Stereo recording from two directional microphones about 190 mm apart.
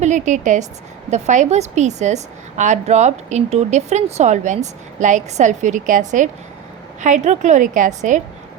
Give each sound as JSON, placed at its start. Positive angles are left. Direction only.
{"t": 0.0, "sound": "a woman's voice", "side_deg": -40}